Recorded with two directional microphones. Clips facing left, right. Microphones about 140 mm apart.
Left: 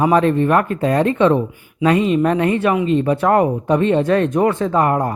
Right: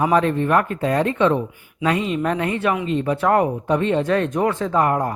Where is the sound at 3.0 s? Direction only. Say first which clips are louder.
Even; 50° left (ahead or behind).